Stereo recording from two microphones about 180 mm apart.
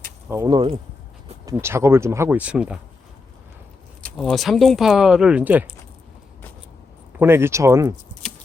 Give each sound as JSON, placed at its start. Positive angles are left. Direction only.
{"t": 0.3, "sound": "speech", "side_deg": -20}
{"t": 1.5, "sound": "speech", "side_deg": -15}
{"t": 4.0, "sound": "speech", "side_deg": 0}
{"t": 7.2, "sound": "speech", "side_deg": -15}